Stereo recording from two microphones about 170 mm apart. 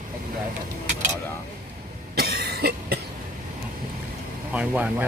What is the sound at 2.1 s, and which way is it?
Cough, 70° right (ahead or behind).